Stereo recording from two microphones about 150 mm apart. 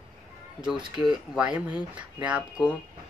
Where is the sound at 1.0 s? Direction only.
5° right (ahead or behind).